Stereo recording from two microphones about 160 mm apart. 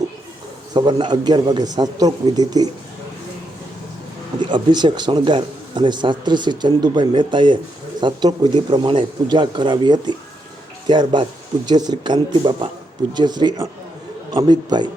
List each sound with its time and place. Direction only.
0.7 s speech: 25° right (ahead or behind)
4.4 s speech: 30° right (ahead or behind)